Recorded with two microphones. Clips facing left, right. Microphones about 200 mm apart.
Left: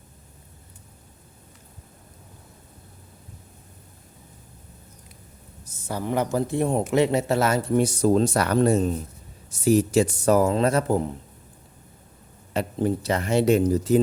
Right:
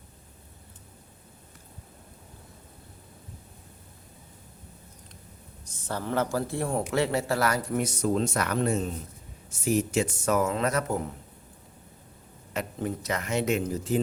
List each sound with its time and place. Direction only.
5.6 s speech: 10° left (ahead or behind); by 11.1 s 30° left (ahead or behind)
12.5 s speech: 30° left (ahead or behind)